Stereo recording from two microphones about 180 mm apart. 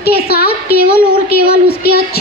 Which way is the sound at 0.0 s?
60° left (ahead or behind).